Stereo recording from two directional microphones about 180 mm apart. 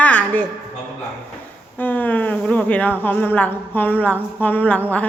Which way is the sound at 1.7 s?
10° left (ahead or behind).